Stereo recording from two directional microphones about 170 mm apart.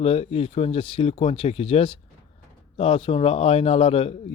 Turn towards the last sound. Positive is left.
turn(degrees=35)  # may be behind; listen again after turning